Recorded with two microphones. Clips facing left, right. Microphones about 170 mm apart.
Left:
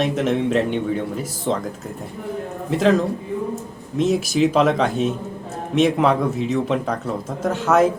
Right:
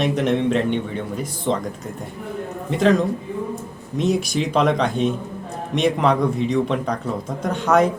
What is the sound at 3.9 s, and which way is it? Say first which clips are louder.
Speech: left 3 dB; centre (ahead or behind).